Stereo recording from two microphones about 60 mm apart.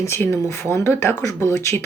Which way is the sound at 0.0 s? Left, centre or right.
Left.